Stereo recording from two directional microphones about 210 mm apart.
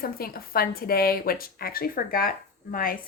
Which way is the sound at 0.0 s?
45° left (ahead or behind).